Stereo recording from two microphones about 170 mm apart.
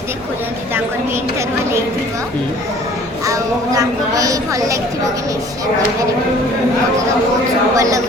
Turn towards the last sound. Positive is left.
turn(degrees=-20)  # may be behind; listen again after turning